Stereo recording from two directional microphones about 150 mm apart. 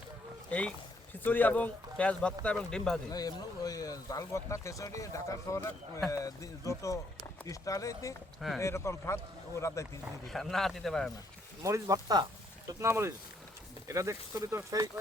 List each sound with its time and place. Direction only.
1.2 s a man's voice: 10° left (ahead or behind)
3.1 s speech: 25° left (ahead or behind)
10.2 s speech: centre (ahead or behind)
11.6 s speech: 20° right (ahead or behind)